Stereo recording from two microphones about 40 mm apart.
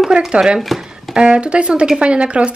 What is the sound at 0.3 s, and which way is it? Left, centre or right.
Speech, right.